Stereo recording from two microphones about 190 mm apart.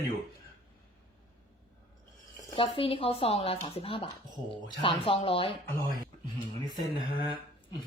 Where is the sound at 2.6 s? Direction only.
30° left (ahead or behind).